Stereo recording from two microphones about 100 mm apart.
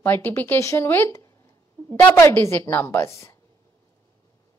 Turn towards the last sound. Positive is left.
turn(degrees=30)  # may be behind; listen again after turning